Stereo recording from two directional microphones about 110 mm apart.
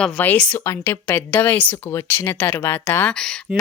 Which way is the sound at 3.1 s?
5° left (ahead or behind).